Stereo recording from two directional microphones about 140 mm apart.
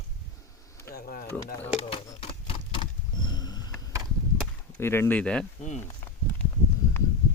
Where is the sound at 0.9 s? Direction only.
90° left.